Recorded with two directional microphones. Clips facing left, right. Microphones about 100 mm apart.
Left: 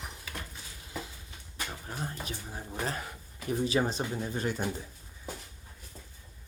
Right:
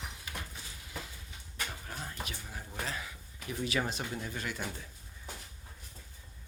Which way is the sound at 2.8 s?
45° left (ahead or behind).